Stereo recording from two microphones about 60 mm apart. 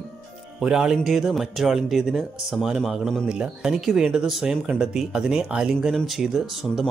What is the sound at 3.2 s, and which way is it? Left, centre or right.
Speech, centre.